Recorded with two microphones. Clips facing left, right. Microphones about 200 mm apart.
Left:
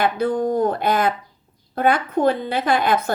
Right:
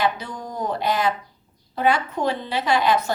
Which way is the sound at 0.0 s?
55° left (ahead or behind).